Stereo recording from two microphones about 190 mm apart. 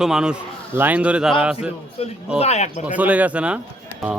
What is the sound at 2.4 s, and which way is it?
Speech, 35° left (ahead or behind).